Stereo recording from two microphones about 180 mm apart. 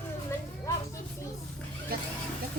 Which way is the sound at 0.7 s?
15° left (ahead or behind).